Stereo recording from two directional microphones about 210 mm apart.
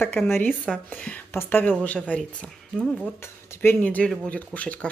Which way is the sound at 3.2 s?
10° left (ahead or behind).